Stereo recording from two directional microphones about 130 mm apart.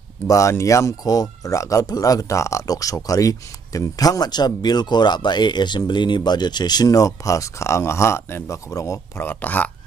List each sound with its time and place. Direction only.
0.3 s speech: 25° left (ahead or behind)